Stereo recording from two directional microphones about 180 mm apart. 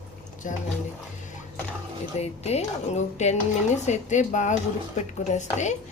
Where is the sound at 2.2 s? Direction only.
35° left (ahead or behind).